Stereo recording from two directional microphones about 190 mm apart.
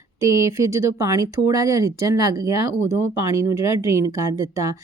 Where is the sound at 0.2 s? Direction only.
15° right (ahead or behind).